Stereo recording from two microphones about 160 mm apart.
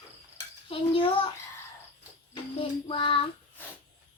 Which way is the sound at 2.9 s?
35° left (ahead or behind).